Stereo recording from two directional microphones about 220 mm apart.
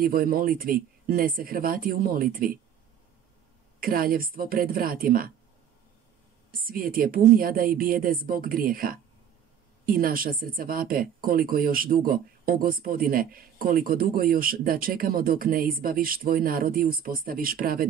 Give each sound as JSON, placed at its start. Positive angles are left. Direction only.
{"t": 0.0, "sound": "speech", "side_deg": -40}
{"t": 3.8, "sound": "speech", "side_deg": -40}
{"t": 6.6, "sound": "speech", "side_deg": -40}